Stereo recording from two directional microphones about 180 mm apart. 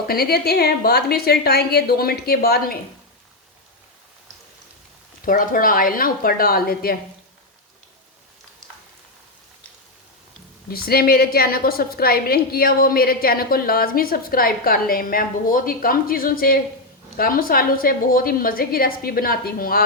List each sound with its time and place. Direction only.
0.1 s a woman's voice: 55° left (ahead or behind)
5.2 s a woman's voice: 50° left (ahead or behind)
10.7 s a woman's voice: 55° left (ahead or behind)